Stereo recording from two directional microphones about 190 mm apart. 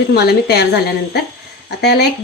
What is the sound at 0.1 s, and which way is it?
A woman's voice, 60° left (ahead or behind).